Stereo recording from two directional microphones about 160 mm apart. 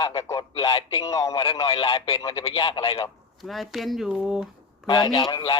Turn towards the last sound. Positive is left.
turn(degrees=30)  # may be behind; listen again after turning